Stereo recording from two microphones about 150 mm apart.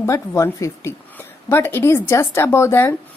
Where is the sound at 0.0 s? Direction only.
20° left (ahead or behind).